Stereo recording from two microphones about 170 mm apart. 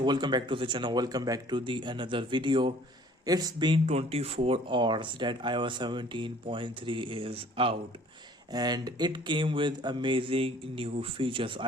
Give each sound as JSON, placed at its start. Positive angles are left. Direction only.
{"t": 0.0, "sound": "speech", "side_deg": -25}